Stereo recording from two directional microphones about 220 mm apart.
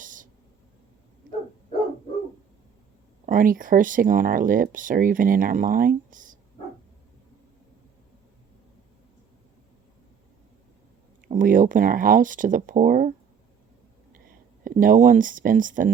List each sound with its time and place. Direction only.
0.0 s a sound: 35° right (ahead or behind)
3.2 s speech: 40° right (ahead or behind)
11.3 s speech: 35° right (ahead or behind)
14.6 s speech: 40° right (ahead or behind)